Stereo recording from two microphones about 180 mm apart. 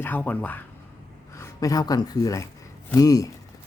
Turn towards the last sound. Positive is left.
turn(degrees=20)  # may be behind; listen again after turning